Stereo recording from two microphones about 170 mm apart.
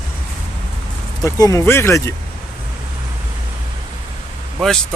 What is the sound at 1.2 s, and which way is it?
Speech, 20° left (ahead or behind).